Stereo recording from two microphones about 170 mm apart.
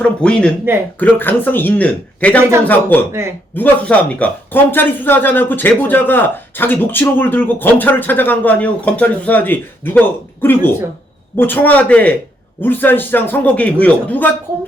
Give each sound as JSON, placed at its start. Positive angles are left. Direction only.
{"t": 0.0, "sound": "speech", "side_deg": 5}
{"t": 3.1, "sound": "speech", "side_deg": -15}
{"t": 3.5, "sound": "speech", "side_deg": 10}